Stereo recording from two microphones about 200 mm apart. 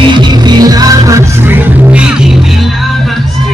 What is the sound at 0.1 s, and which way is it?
Music, 20° right (ahead or behind).